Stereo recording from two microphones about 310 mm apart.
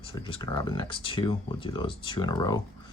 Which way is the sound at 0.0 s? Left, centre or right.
Centre.